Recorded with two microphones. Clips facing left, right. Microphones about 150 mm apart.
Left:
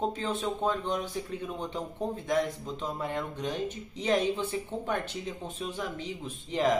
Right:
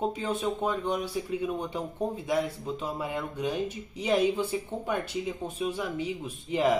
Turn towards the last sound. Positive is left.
turn(degrees=-10)  # may be behind; listen again after turning